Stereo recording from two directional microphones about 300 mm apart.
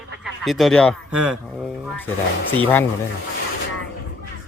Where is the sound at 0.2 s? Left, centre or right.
Centre.